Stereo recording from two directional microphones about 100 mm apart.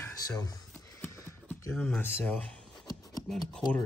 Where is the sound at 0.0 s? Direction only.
30° left (ahead or behind).